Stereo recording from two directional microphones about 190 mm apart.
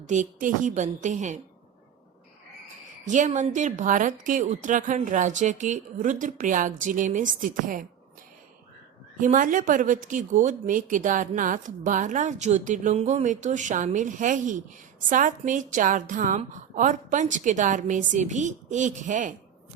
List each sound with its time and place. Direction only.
0.0 s a woman's voice: 40° right (ahead or behind)
3.0 s a woman's voice: 40° right (ahead or behind)
9.2 s a woman's voice: 45° right (ahead or behind)